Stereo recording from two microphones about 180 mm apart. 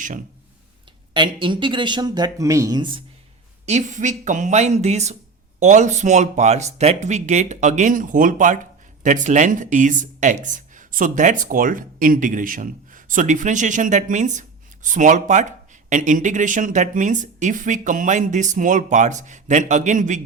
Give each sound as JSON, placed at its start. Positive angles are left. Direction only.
{"t": 1.1, "sound": "speech", "side_deg": -25}
{"t": 3.7, "sound": "speech", "side_deg": -40}